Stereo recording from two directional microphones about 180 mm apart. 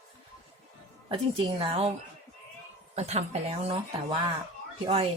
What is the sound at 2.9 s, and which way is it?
Speech, 35° right (ahead or behind).